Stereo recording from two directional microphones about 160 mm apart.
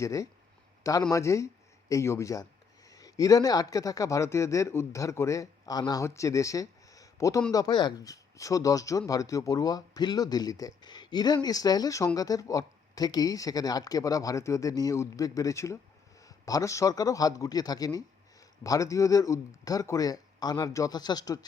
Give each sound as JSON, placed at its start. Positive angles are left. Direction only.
{"t": 0.0, "sound": "speech", "side_deg": 20}